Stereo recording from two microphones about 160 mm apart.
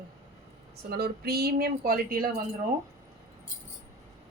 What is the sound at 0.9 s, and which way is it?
A woman's voice, 80° right.